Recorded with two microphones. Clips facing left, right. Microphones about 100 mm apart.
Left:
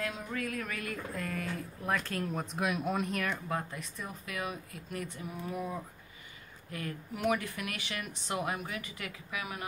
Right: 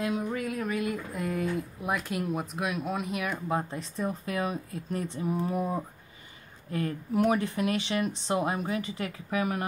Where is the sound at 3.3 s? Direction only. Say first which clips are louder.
Right 6 dB; 25° right (ahead or behind).